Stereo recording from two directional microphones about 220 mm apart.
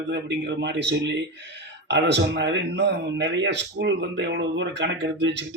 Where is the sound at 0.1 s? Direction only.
50° right (ahead or behind).